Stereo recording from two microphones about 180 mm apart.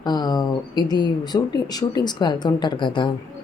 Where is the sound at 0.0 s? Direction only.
25° left (ahead or behind).